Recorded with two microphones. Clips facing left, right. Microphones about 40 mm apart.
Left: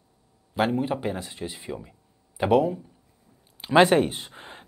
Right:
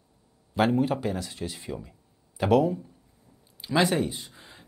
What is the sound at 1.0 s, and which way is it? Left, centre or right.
Speech, left.